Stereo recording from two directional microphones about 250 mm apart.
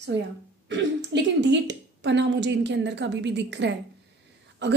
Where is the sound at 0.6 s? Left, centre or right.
Right.